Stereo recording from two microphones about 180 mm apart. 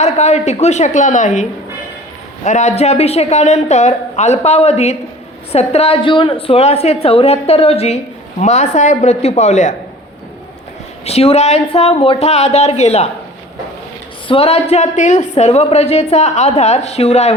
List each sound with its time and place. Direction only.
0.0 s a woman's voice: 40° left (ahead or behind)
11.0 s a woman's voice: 35° left (ahead or behind)
14.3 s a woman's voice: 30° left (ahead or behind)